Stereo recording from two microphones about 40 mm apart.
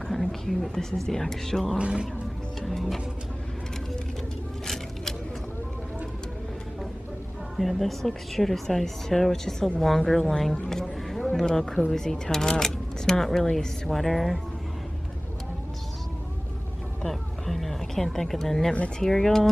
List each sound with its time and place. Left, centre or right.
0.1 s speech: centre
1.8 s speech: right
2.6 s music: centre
7.5 s speech: centre
10.7 s a sound: centre
11.3 s speech: centre
17.1 s a sound: centre
18.9 s speech: centre